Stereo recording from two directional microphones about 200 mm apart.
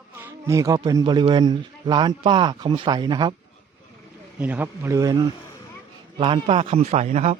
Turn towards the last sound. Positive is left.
turn(degrees=-35)  # may be behind; listen again after turning